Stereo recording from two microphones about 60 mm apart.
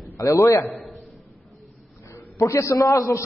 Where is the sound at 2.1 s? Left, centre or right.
Left.